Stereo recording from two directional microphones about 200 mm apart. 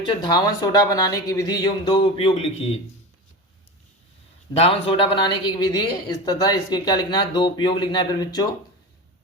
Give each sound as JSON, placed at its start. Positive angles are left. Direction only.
{"t": 0.0, "sound": "speech", "side_deg": 20}
{"t": 4.5, "sound": "speech", "side_deg": 30}